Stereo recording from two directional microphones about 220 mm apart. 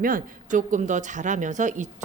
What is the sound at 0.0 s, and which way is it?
A woman's voice, 40° right (ahead or behind).